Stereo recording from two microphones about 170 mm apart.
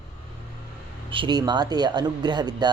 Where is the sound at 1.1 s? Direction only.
25° right (ahead or behind).